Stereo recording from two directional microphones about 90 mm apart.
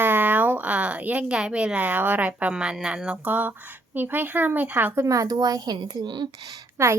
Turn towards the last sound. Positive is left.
turn(degrees=-30)  # may be behind; listen again after turning